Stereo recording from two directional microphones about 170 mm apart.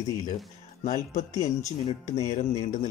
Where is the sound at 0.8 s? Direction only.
45° left (ahead or behind).